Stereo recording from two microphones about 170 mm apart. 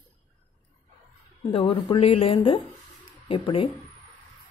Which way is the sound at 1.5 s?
30° left (ahead or behind).